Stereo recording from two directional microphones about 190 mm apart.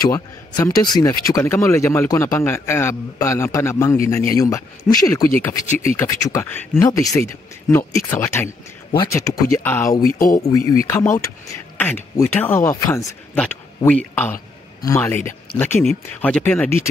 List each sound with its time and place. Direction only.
0.0 s a man's voice: 20° left (ahead or behind)